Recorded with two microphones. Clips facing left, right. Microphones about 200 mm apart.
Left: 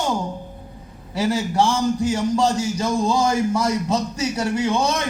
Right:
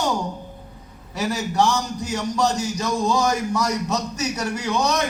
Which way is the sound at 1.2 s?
30° left (ahead or behind).